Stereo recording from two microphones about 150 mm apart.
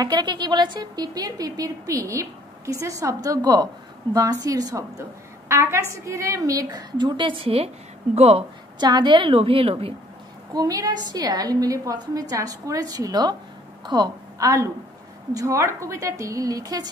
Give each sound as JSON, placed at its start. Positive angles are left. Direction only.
{"t": 0.0, "sound": "a woman's voice", "side_deg": -30}
{"t": 8.7, "sound": "a woman's voice", "side_deg": -30}
{"t": 10.5, "sound": "a woman's voice", "side_deg": -25}